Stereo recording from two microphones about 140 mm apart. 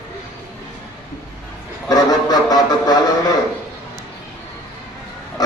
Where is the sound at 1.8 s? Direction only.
25° left (ahead or behind).